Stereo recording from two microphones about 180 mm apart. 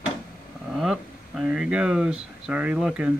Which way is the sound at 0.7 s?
Centre (ahead or behind).